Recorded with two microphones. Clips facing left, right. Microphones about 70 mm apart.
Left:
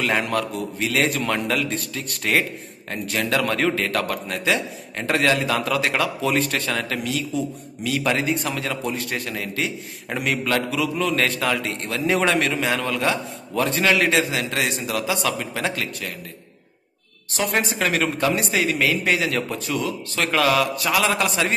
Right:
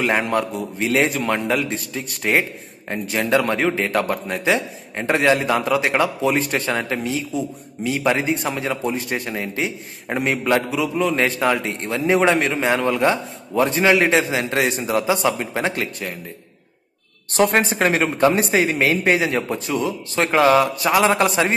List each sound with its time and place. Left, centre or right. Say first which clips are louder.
0.0 s a man's voice: right 3 dB; centre
1.1 s a man's voice: right 2 dB; centre; by 16.1 s right
17.3 s a man's voice: right 6 dB; right